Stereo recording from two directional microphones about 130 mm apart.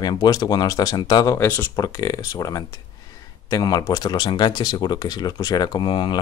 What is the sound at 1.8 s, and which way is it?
Speech, 30° left (ahead or behind).